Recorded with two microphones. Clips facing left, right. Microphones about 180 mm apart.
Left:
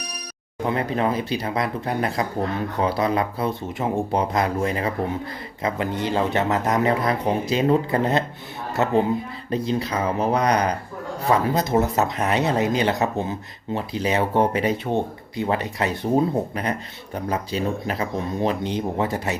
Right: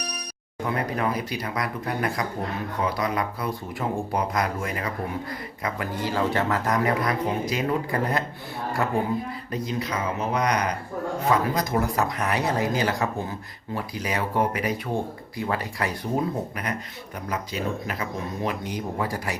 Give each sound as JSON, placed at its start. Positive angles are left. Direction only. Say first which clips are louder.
{"t": 0.6, "sound": "speech", "louder": "left 4 dB", "side_deg": 25}